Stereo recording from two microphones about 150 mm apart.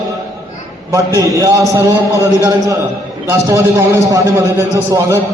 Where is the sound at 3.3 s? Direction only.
20° right (ahead or behind).